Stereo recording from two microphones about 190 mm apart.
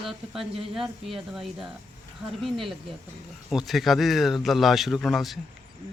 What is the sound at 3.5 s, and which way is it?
Speech, centre (ahead or behind).